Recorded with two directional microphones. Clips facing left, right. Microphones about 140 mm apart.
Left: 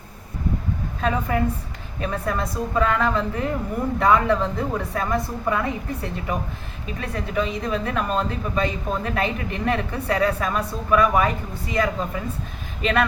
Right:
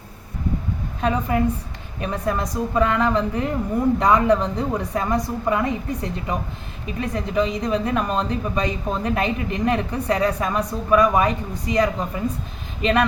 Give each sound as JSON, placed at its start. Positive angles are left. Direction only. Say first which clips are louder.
{"t": 1.0, "sound": "a woman's voice", "louder": "right 2 dB", "side_deg": -20}